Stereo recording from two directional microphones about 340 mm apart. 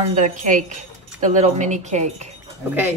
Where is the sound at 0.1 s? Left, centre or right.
Right.